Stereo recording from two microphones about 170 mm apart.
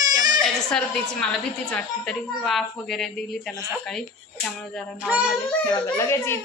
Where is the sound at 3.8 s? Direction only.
5° left (ahead or behind).